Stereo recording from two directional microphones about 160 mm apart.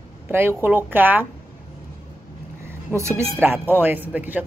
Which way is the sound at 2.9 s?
15° right (ahead or behind).